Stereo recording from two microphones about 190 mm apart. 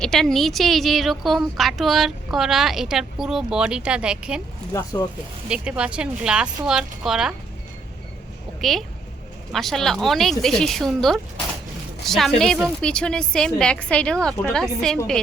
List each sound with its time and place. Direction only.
0.0 s a woman's voice: centre (ahead or behind)
4.7 s speech: 15° left (ahead or behind)
5.5 s a woman's voice: 5° right (ahead or behind)
8.6 s a woman's voice: centre (ahead or behind)